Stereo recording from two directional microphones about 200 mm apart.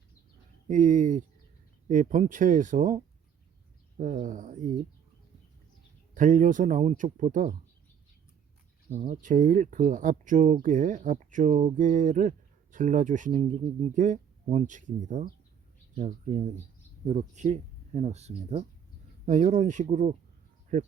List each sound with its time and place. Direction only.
0.7 s speech: 40° right (ahead or behind)
6.1 s speech: 40° right (ahead or behind)
8.9 s speech: 35° right (ahead or behind)